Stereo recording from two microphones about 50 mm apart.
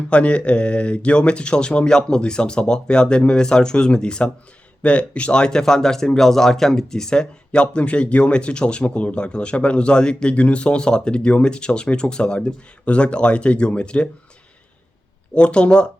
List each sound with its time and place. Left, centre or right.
0.1 s speech: left
15.4 s speech: left